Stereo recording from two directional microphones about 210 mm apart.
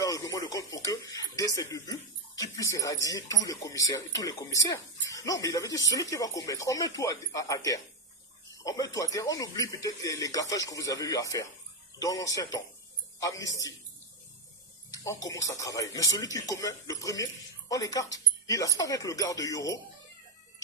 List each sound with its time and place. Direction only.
0.0 s speech: 15° left (ahead or behind)
14.9 s speech: 15° left (ahead or behind)